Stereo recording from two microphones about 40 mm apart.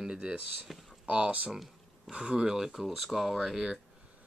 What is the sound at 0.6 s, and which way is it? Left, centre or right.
Speech, centre.